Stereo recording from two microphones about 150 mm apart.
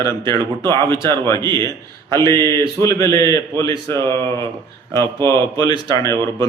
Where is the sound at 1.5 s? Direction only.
20° left (ahead or behind).